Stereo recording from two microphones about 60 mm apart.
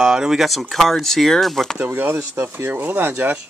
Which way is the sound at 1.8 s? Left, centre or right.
Right.